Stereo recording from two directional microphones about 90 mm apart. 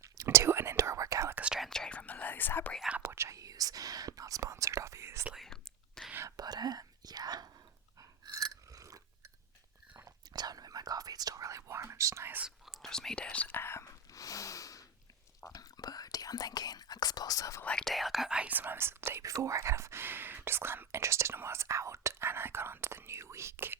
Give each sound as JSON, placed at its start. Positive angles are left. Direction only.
{"t": 0.0, "sound": "whispering", "side_deg": -35}
{"t": 1.5, "sound": "whispering", "side_deg": 5}
{"t": 3.0, "sound": "whispering", "side_deg": -30}
{"t": 5.3, "sound": "whispering", "side_deg": 5}
{"t": 6.3, "sound": "whispering", "side_deg": -50}
{"t": 8.3, "sound": "a sound", "side_deg": -40}
{"t": 10.3, "sound": "whispering", "side_deg": -45}
{"t": 12.5, "sound": "whispering", "side_deg": -5}
{"t": 12.9, "sound": "whispering", "side_deg": 5}
{"t": 13.8, "sound": "snort", "side_deg": 40}
{"t": 15.5, "sound": "whispering", "side_deg": 45}
{"t": 17.6, "sound": "whispering", "side_deg": 10}